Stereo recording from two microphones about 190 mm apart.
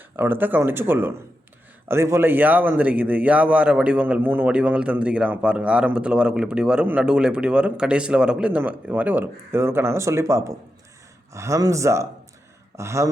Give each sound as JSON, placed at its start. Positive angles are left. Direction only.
{"t": 0.2, "sound": "a man's voice", "side_deg": -10}